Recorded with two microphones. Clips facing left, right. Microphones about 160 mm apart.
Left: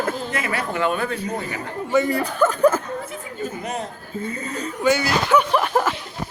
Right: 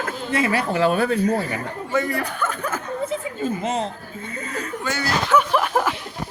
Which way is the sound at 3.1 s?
25° right (ahead or behind).